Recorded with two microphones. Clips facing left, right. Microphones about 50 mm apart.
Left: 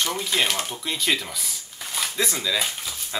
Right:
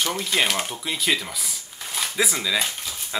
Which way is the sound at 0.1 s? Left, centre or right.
Centre.